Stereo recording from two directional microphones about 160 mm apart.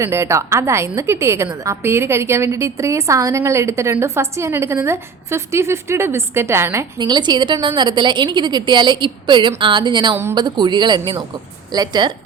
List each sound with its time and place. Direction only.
0.0 s a woman's voice: 15° right (ahead or behind)